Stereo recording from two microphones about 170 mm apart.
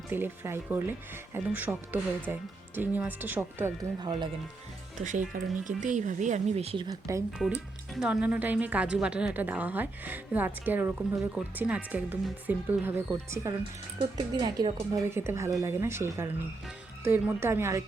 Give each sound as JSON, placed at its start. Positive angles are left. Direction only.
{"t": 0.1, "sound": "a woman's voice", "side_deg": -15}
{"t": 5.0, "sound": "speech", "side_deg": -45}
{"t": 7.4, "sound": "a woman's voice", "side_deg": 5}